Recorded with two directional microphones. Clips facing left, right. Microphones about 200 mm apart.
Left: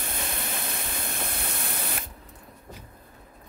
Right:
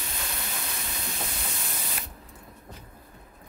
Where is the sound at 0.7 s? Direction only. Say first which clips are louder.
Left 3 dB; 55° left (ahead or behind).